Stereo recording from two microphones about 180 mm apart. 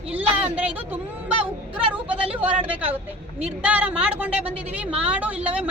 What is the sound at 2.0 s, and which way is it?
A woman's voice, 5° right (ahead or behind).